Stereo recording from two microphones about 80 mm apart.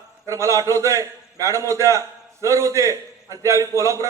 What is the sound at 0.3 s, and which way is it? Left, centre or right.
A man's voice, right.